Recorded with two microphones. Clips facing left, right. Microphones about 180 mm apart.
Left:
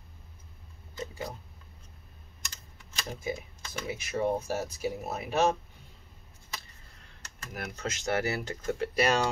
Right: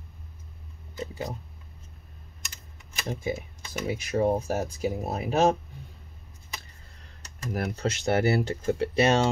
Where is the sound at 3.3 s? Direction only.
10° right (ahead or behind).